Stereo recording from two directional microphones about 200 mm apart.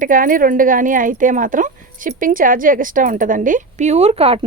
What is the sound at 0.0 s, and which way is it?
Speech, 45° right (ahead or behind).